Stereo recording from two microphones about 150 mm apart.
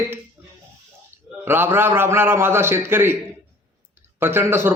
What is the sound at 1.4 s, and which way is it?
A man's voice, 15° right (ahead or behind).